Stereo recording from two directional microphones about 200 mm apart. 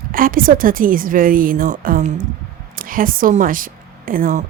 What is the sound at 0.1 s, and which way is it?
Speech, 45° right (ahead or behind).